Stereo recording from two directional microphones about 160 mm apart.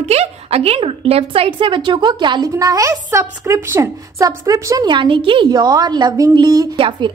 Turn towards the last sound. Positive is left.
turn(degrees=-25)  # may be behind; listen again after turning